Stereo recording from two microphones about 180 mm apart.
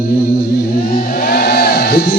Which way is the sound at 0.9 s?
55° left (ahead or behind).